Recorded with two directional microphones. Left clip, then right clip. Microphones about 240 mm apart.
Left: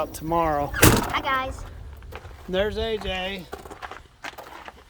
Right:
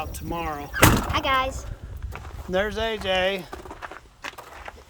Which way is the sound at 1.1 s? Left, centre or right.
Right.